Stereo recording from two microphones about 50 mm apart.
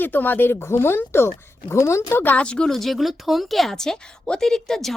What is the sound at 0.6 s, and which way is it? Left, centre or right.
Speech, left.